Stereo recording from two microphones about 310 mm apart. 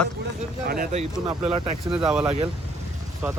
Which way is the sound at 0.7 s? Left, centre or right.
Right.